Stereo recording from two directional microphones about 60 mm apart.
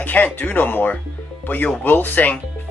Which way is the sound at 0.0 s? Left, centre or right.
Left.